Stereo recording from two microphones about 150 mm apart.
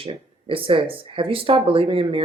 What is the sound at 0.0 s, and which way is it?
Speech, 35° right (ahead or behind).